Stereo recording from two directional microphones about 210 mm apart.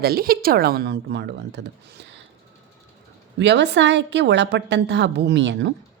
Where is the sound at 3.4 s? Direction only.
55° right (ahead or behind).